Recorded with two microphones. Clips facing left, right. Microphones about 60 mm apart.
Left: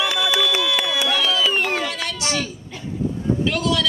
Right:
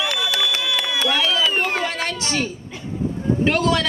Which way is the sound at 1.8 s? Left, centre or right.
Right.